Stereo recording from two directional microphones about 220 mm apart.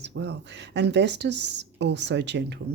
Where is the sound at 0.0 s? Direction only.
50° right (ahead or behind).